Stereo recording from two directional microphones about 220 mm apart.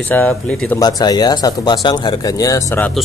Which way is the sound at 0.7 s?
15° left (ahead or behind).